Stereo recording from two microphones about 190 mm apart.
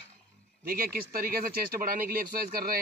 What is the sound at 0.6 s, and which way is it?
Speech, 50° right (ahead or behind).